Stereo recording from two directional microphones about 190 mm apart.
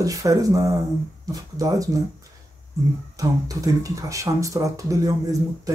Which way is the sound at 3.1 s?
20° right (ahead or behind).